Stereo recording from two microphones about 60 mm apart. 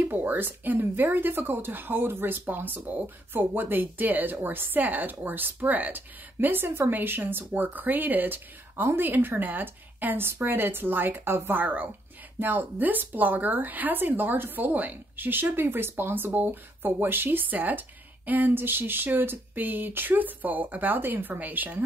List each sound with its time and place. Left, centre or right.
0.0 s speech: right